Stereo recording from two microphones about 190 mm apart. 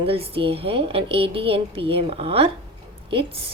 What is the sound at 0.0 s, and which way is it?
A woman's voice, 30° right (ahead or behind).